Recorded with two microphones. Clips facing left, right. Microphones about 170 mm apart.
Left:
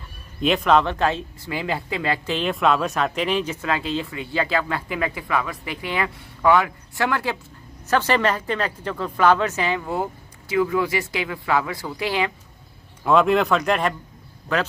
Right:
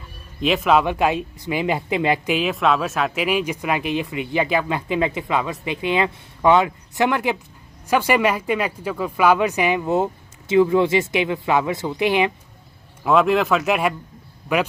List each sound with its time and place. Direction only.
0.4 s speech: 5° right (ahead or behind)
2.4 s speech: centre (ahead or behind); by 12.3 s 20° right (ahead or behind)
13.0 s speech: centre (ahead or behind)